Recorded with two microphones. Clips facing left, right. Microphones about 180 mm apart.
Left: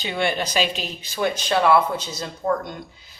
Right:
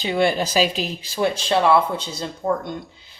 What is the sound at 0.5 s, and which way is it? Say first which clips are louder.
Speech: right 4 dB; 35° right (ahead or behind).